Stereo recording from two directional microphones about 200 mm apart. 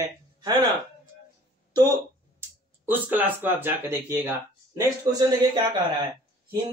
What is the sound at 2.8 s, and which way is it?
Speech, 10° right (ahead or behind).